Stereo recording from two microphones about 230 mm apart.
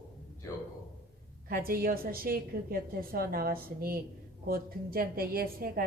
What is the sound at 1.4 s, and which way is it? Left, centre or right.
A woman's voice, right.